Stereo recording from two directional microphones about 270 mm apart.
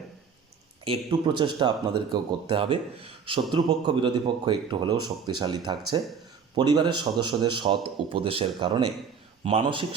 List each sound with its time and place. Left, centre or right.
0.9 s speech: right